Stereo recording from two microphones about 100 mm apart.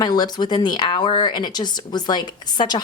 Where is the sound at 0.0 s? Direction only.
45° left (ahead or behind).